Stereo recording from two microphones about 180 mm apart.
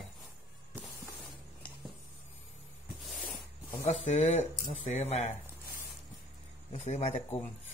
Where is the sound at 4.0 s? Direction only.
40° left (ahead or behind).